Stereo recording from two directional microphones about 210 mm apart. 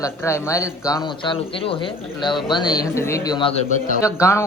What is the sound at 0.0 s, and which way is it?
A man's voice, 15° left (ahead or behind).